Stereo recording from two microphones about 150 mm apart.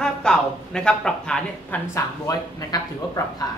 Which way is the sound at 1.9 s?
20° left (ahead or behind).